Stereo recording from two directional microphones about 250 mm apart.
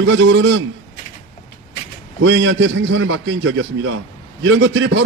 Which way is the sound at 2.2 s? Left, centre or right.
Right.